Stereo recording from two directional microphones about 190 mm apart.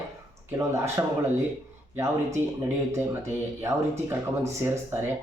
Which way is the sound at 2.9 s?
15° right (ahead or behind).